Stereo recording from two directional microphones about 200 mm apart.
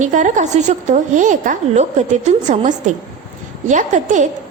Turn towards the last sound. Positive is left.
turn(degrees=-40)  # may be behind; listen again after turning